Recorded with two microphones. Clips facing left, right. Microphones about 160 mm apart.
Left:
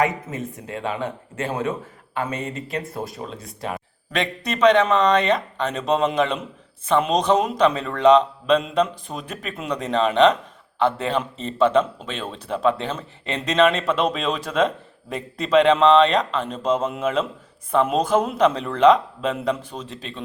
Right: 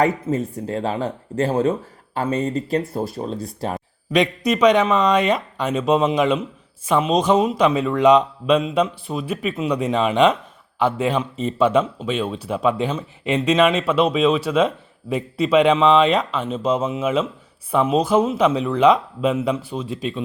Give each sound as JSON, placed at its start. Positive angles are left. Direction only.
{"t": 0.0, "sound": "speech", "side_deg": -35}
{"t": 4.1, "sound": "speech", "side_deg": -10}